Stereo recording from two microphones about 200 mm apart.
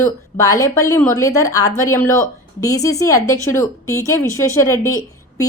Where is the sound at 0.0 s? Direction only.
15° left (ahead or behind).